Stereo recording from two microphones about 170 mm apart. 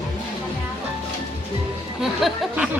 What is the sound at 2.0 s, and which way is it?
Speech, centre (ahead or behind).